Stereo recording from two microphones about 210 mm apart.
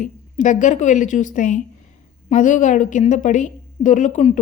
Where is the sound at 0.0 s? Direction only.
35° left (ahead or behind).